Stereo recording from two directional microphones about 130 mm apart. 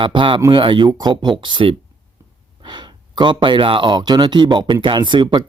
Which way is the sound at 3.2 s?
35° right (ahead or behind).